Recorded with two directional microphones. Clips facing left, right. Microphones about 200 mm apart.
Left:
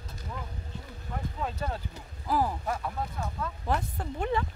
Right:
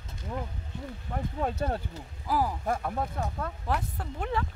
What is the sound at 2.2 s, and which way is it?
Speech, 10° right (ahead or behind).